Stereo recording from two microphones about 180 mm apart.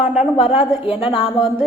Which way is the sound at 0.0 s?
5° right (ahead or behind).